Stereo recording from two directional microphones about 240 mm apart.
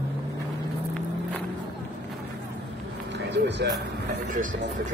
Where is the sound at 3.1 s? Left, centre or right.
Right.